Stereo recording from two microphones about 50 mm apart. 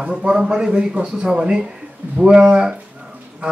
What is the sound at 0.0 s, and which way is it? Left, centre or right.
A man's voice, centre.